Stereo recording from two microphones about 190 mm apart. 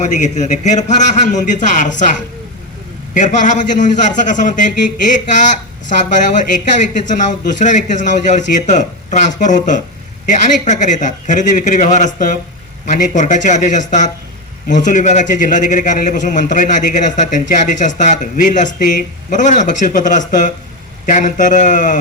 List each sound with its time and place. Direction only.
0.1 s a man's voice: 40° left (ahead or behind)
3.2 s a man's voice: 40° left (ahead or behind)